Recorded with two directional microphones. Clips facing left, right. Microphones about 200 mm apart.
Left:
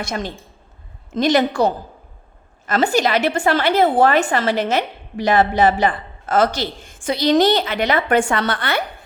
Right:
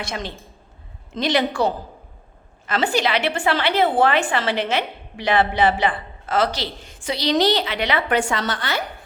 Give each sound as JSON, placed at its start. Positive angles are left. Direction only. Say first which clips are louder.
{"t": 0.0, "sound": "a woman's voice", "louder": "left 4 dB", "side_deg": 45}